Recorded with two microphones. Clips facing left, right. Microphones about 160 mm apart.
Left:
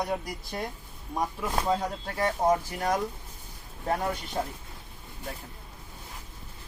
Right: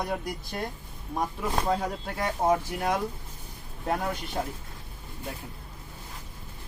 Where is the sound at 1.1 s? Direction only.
Centre (ahead or behind).